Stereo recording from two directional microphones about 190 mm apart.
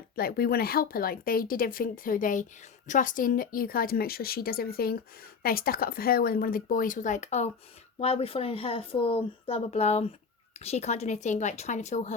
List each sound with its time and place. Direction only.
0.2 s speech: 50° left (ahead or behind)